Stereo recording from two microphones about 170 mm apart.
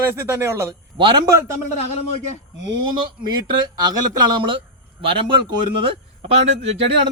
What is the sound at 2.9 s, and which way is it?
Speech, 25° right (ahead or behind).